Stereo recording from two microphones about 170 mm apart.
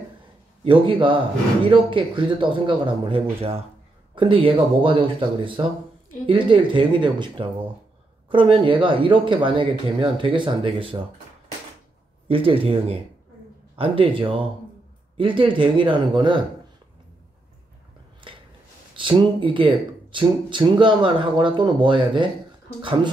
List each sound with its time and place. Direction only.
0.7 s speech: 30° right (ahead or behind)
12.3 s speech: 30° right (ahead or behind)
18.3 s a sound: 30° right (ahead or behind)
18.9 s speech: 30° right (ahead or behind)